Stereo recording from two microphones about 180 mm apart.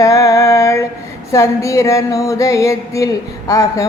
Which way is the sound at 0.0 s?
20° left (ahead or behind).